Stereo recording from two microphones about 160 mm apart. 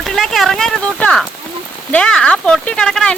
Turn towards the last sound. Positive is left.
turn(degrees=5)  # may be behind; listen again after turning